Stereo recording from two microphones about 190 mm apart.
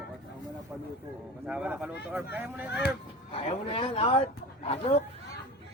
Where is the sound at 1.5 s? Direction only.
5° right (ahead or behind).